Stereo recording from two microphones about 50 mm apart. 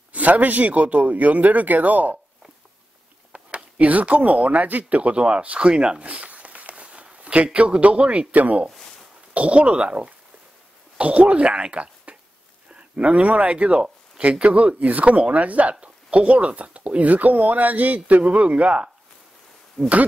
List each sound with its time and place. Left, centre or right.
0.1 s speech: right
3.3 s speech: right
19.8 s speech: centre